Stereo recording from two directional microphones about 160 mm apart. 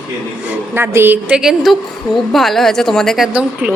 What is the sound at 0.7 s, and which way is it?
A woman's voice, 15° right (ahead or behind).